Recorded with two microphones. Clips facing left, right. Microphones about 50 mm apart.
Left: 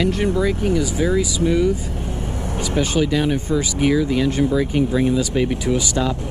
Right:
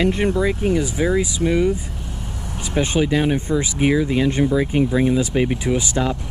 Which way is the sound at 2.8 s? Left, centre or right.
Right.